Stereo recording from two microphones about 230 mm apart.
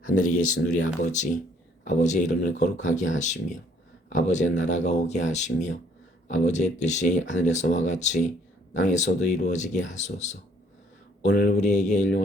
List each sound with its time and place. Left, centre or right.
0.0 s speech: left
0.7 s speech: left
11.5 s speech: left